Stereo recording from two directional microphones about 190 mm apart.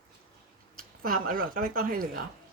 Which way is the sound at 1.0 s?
45° right (ahead or behind).